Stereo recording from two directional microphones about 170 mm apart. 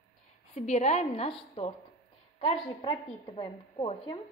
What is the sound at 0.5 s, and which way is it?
Speech, 40° left (ahead or behind).